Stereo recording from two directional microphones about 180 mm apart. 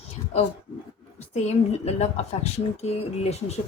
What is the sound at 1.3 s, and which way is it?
A woman's voice, 40° left (ahead or behind).